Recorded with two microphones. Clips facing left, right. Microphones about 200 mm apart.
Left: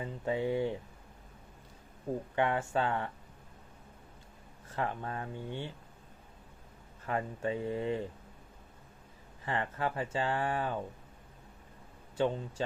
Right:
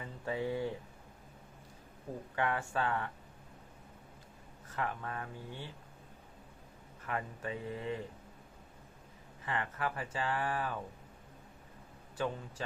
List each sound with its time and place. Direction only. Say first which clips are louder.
0.0 s speech: left 4 dB; 25° left (ahead or behind)
2.3 s speech: left 3 dB; 25° left (ahead or behind)
4.7 s speech: left 3 dB; 30° left (ahead or behind)
7.0 s speech: left 5 dB; 30° left (ahead or behind)
9.5 s speech: left 3 dB; 30° left (ahead or behind)
12.1 s speech: left 6 dB; 25° left (ahead or behind)